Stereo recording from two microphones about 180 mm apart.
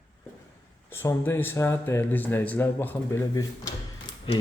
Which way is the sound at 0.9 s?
10° left (ahead or behind).